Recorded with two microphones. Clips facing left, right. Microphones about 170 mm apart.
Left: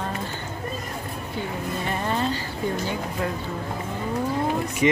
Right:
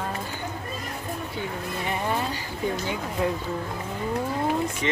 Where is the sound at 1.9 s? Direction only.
15° right (ahead or behind).